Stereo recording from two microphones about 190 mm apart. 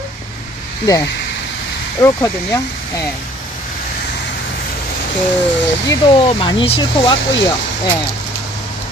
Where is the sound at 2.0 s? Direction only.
15° left (ahead or behind).